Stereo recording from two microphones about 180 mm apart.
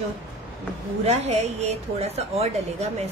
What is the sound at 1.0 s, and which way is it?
A woman's voice, 35° right (ahead or behind).